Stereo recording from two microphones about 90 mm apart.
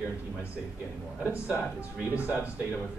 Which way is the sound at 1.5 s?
15° right (ahead or behind).